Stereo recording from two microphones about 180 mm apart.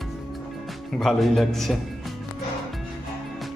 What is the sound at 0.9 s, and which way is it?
Speech, centre (ahead or behind).